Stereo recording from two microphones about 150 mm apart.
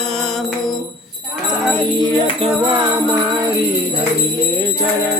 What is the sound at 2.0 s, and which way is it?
Music, 30° right (ahead or behind).